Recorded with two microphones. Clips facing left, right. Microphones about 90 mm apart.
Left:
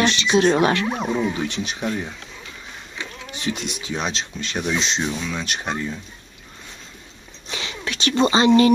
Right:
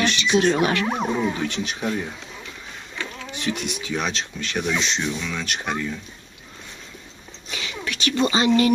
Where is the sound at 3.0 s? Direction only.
25° left (ahead or behind).